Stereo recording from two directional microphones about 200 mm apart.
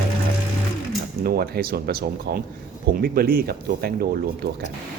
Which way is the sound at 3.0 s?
50° right (ahead or behind).